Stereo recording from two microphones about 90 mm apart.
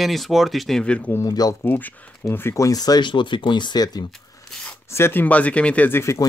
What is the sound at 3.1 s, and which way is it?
Speech, 60° left (ahead or behind).